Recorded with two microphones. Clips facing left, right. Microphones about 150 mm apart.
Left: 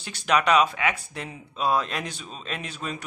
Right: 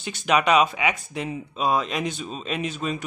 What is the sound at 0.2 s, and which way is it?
Speech, 5° right (ahead or behind).